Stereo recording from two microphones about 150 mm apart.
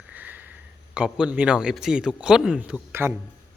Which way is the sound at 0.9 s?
5° right (ahead or behind).